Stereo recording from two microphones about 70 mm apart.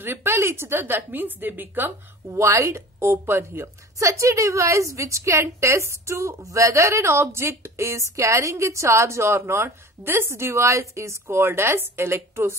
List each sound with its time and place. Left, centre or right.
0.0 s a woman's voice: right
2.2 s a woman's voice: right